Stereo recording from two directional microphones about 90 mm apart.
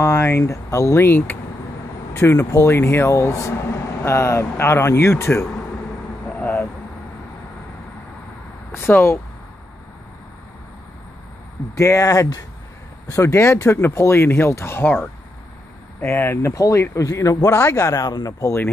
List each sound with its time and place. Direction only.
0.0 s speech: 30° left (ahead or behind)
6.2 s vehicle: 20° left (ahead or behind)
8.7 s speech: 25° left (ahead or behind)
11.7 s speech: 35° left (ahead or behind)
16.5 s speech: 40° left (ahead or behind)